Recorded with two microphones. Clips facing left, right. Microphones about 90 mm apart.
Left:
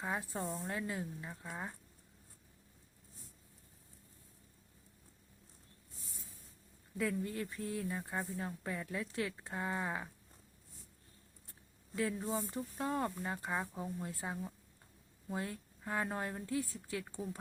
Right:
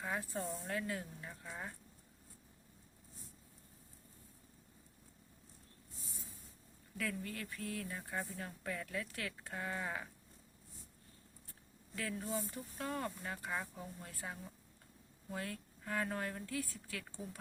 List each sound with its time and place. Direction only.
0.0 s speech: 20° left (ahead or behind)
6.9 s speech: 25° left (ahead or behind)
11.9 s speech: 25° left (ahead or behind)